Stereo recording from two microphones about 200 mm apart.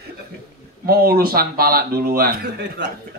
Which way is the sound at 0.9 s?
50° right (ahead or behind).